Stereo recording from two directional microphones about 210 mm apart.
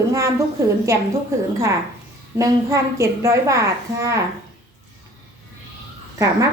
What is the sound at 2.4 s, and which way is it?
A woman's voice, 15° right (ahead or behind).